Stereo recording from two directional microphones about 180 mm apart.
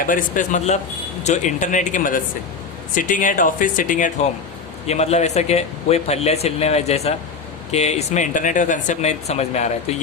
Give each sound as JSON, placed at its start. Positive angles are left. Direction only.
{"t": 0.0, "sound": "speech", "side_deg": 50}